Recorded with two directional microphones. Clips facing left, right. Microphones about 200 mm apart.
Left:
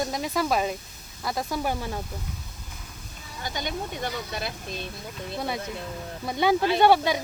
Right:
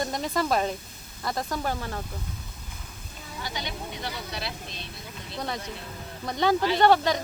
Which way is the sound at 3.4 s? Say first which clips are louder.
Left 4 dB; 50° left (ahead or behind).